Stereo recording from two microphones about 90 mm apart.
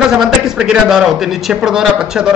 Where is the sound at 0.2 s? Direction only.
5° right (ahead or behind).